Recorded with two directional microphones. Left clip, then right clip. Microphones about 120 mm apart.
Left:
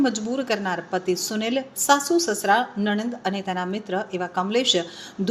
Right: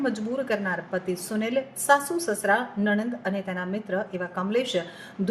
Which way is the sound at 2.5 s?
50° left (ahead or behind).